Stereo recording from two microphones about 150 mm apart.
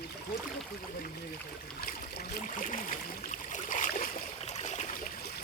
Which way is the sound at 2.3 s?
65° left (ahead or behind).